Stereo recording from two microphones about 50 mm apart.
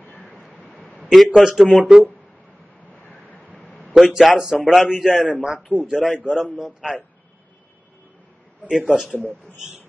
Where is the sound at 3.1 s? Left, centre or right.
Left.